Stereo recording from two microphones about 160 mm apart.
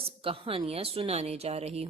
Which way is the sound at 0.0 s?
35° right (ahead or behind).